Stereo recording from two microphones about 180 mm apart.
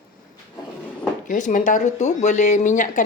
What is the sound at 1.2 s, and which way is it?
A woman's voice, 45° left (ahead or behind).